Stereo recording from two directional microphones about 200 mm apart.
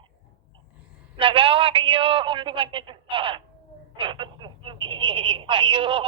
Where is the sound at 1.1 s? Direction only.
25° right (ahead or behind).